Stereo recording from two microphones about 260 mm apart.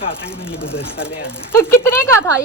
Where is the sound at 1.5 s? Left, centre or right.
Centre.